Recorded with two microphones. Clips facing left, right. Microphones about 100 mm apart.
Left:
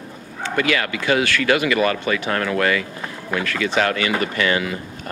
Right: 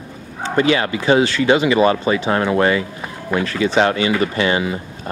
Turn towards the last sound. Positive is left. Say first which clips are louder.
# right 4 dB
turn(degrees=-25)  # may be behind; listen again after turning